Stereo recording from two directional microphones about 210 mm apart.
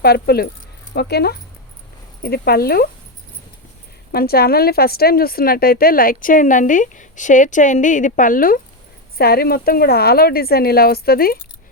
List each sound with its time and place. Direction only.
0.0 s a woman's voice: 50° left (ahead or behind)
4.1 s a woman's voice: 45° left (ahead or behind)